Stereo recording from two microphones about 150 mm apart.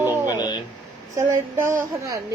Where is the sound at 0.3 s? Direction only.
30° left (ahead or behind).